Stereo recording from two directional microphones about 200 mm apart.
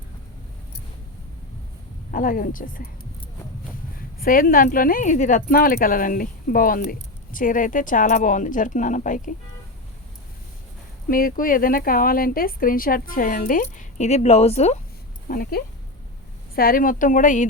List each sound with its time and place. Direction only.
2.0 s speech: 45° left (ahead or behind)
4.2 s speech: 45° left (ahead or behind)
11.1 s speech: 45° left (ahead or behind)
15.3 s speech: 45° left (ahead or behind)